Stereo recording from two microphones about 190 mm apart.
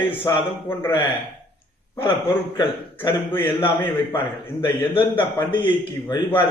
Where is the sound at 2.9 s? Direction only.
10° left (ahead or behind).